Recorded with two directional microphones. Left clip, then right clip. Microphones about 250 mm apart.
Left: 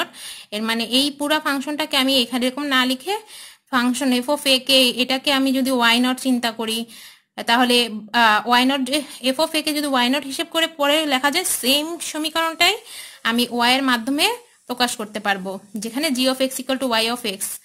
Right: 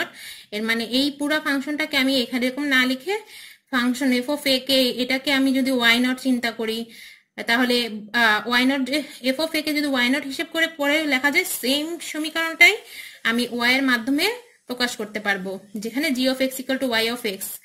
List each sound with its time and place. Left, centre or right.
0.0 s a woman's voice: centre